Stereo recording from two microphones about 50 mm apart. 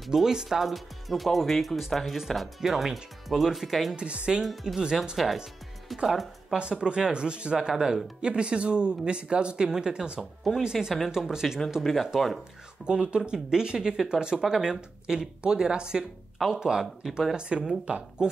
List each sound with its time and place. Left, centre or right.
0.0 s speech: centre
3.9 s speech: right
4.4 s speech: centre
6.5 s speech: centre
11.8 s speech: centre
12.8 s speech: centre